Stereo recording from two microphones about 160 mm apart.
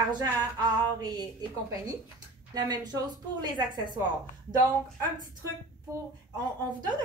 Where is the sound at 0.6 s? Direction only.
25° right (ahead or behind).